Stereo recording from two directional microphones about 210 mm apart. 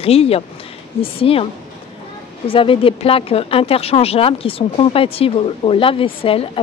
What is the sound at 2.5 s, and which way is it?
Speech, 25° left (ahead or behind).